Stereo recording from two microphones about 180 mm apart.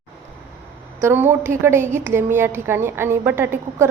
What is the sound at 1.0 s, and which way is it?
A woman's voice, 10° right (ahead or behind).